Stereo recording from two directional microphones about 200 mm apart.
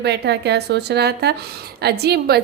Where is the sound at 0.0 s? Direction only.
55° right (ahead or behind).